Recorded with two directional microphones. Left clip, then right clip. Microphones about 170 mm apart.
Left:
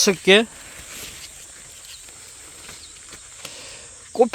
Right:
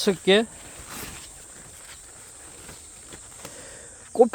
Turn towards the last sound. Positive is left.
turn(degrees=-10)  # may be behind; listen again after turning